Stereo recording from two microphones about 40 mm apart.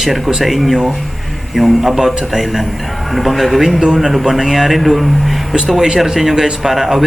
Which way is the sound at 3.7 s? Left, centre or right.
Centre.